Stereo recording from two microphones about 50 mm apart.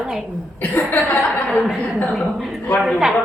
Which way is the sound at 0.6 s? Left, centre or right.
Left.